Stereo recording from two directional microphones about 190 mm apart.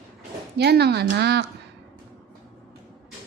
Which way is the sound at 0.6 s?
60° right (ahead or behind).